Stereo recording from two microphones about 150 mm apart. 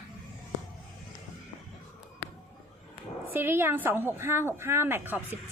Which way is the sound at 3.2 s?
15° right (ahead or behind).